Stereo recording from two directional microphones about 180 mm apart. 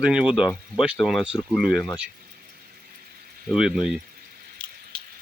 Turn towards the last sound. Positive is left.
turn(degrees=-5)  # may be behind; listen again after turning